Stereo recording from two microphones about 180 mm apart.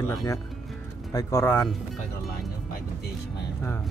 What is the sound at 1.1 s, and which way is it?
Speech, 15° left (ahead or behind).